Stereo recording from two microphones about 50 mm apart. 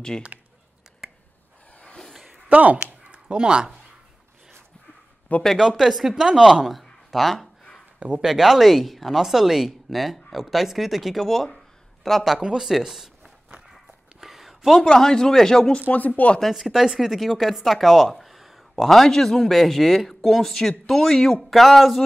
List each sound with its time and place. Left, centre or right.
0.1 s speech: centre
1.0 s a sound: centre
1.7 s a sound: left
2.5 s speech: right
5.6 s speech: centre
12.4 s speech: centre
14.2 s a sound: centre
14.9 s speech: centre
15.9 s speech: left
16.3 s speech: centre